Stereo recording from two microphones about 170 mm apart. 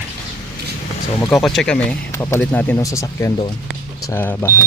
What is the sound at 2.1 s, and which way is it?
Speech, 15° left (ahead or behind).